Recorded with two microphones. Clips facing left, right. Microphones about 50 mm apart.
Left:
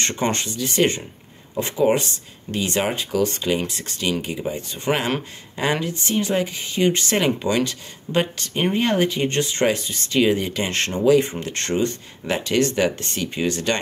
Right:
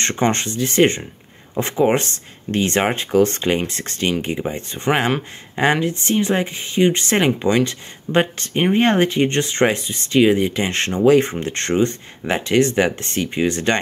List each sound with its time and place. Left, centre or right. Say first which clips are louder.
0.0 s speech: right 4 dB; right
11.1 s speech: right 3 dB; right